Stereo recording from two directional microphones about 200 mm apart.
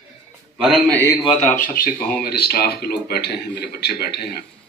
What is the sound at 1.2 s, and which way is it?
Speech, 40° left (ahead or behind).